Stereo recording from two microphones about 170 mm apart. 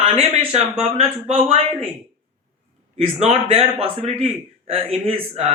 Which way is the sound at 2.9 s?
40° right (ahead or behind).